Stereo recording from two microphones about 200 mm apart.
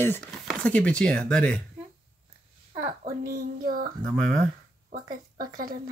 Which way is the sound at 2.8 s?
45° right (ahead or behind).